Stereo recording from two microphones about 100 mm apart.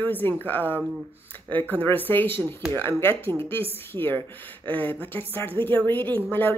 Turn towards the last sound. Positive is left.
turn(degrees=20)  # may be behind; listen again after turning